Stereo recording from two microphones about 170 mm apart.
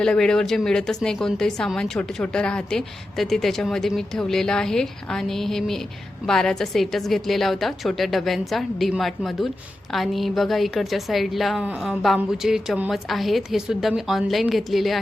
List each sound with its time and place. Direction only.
0.0 s a woman's voice: 5° left (ahead or behind)